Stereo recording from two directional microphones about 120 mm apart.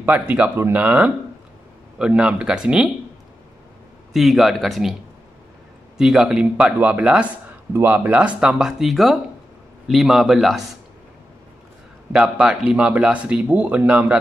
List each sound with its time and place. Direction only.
0.0 s speech: 15° right (ahead or behind)
4.1 s speech: centre (ahead or behind)
5.9 s speech: 5° right (ahead or behind)
12.1 s speech: 5° right (ahead or behind)